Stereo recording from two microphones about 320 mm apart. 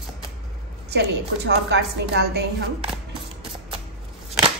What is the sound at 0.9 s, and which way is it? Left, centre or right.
Speech, right.